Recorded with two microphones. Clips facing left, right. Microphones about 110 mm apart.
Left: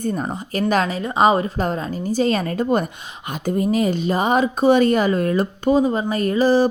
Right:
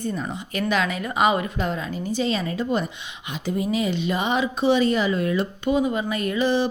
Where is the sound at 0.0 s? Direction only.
45° left (ahead or behind).